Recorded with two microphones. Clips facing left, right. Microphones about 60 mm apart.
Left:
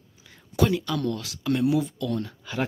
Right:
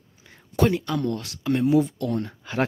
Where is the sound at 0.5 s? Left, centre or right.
Right.